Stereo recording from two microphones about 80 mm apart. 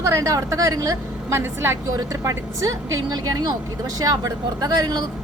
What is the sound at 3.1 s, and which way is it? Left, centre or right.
Speech, right.